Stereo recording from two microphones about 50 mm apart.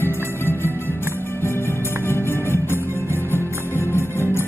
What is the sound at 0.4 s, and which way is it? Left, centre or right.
Music, left.